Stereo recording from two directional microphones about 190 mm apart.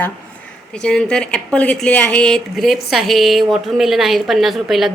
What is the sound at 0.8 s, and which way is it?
A woman's voice, 5° left (ahead or behind).